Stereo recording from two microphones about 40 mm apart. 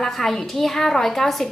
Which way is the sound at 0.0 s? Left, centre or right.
Centre.